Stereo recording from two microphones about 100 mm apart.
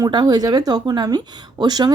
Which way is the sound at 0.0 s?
45° right (ahead or behind).